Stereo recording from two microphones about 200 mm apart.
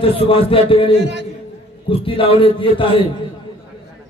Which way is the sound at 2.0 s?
25° left (ahead or behind).